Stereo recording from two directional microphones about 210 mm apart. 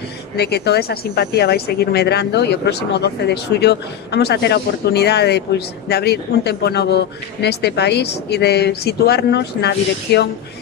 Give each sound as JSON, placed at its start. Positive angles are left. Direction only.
{"t": 0.4, "sound": "speech", "side_deg": 50}